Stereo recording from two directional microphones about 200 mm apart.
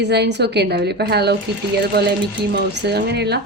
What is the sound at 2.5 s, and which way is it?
Speech, 55° right (ahead or behind).